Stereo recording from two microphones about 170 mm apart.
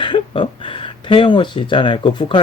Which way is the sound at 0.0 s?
30° left (ahead or behind).